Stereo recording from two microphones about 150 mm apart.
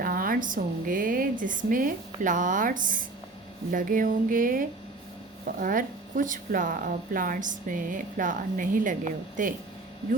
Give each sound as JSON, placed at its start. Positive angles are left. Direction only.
{"t": 0.0, "sound": "speech", "side_deg": -70}
{"t": 3.7, "sound": "a sound", "side_deg": -65}
{"t": 5.5, "sound": "speech", "side_deg": -65}